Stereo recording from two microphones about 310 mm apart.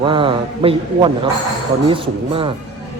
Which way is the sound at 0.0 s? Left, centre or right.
Centre.